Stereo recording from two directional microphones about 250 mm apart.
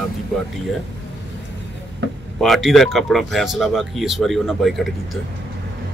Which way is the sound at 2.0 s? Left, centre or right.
Right.